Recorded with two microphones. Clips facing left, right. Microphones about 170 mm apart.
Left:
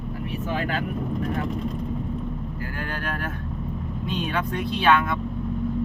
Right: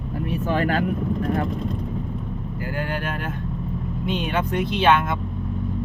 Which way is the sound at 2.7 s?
20° right (ahead or behind).